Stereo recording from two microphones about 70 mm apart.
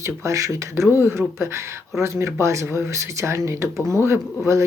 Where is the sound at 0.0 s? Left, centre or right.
Right.